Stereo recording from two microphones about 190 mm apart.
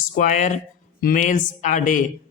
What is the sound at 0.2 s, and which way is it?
Speech, 40° left (ahead or behind).